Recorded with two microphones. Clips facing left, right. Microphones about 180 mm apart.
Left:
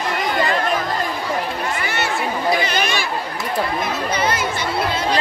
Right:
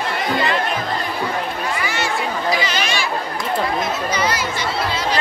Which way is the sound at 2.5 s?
55° left (ahead or behind).